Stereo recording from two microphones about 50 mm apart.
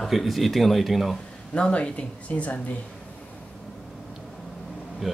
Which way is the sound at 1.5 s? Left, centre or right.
Left.